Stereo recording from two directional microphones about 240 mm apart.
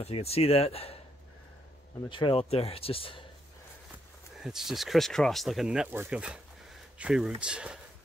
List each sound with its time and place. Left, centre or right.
0.0 s speech: left
2.0 s speech: left
4.4 s speech: centre